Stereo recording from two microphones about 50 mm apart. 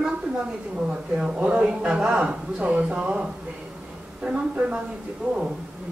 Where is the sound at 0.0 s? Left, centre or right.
Centre.